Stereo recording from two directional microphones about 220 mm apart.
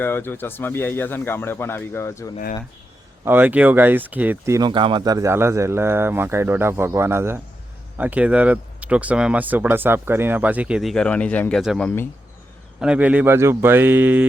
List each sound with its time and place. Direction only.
0.0 s speech: 10° left (ahead or behind)
3.2 s speech: 10° right (ahead or behind)
12.8 s speech: 5° right (ahead or behind)